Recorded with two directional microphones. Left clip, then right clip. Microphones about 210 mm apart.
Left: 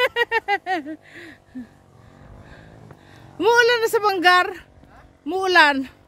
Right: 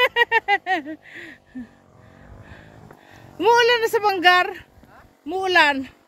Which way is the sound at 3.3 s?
20° left (ahead or behind).